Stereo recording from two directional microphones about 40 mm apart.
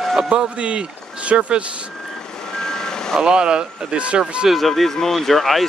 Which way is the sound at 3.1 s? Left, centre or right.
Centre.